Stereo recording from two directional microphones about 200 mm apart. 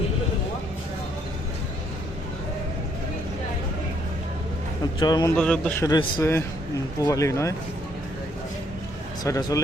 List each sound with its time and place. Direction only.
4.9 s speech: 20° left (ahead or behind)
5.4 s a man's voice: 5° left (ahead or behind)
5.8 s a man's voice: 20° left (ahead or behind)
9.2 s a man's voice: 15° left (ahead or behind)